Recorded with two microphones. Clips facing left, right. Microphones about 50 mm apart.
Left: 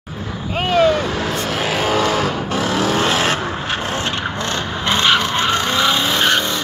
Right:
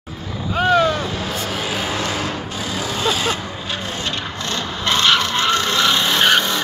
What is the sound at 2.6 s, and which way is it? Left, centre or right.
Vehicle, left.